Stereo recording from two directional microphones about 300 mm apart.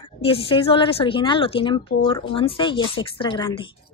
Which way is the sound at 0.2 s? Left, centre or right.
Centre.